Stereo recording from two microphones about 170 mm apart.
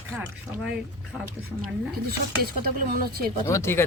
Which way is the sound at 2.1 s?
65° right (ahead or behind).